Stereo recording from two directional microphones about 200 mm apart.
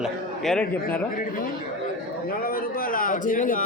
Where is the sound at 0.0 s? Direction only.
Centre (ahead or behind).